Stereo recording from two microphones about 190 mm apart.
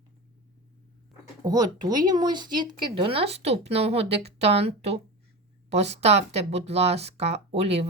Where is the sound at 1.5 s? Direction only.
20° right (ahead or behind).